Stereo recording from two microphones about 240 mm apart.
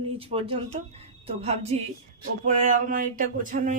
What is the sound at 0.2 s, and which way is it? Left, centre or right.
Speech, right.